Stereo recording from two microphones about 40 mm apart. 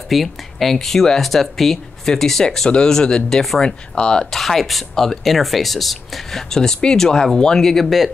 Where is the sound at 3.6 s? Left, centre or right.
Left.